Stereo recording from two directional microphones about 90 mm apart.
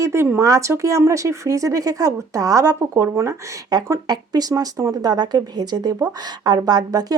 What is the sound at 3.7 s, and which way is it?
Speech, 45° right (ahead or behind).